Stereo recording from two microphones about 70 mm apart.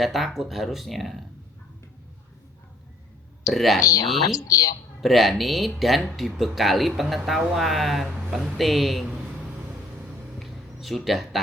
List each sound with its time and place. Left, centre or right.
0.0 s speech: centre
3.4 s speech: centre
3.8 s speech: left
4.9 s speech: centre
10.4 s a sound: centre